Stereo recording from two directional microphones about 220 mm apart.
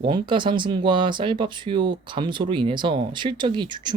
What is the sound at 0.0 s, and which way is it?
Speech, 20° right (ahead or behind).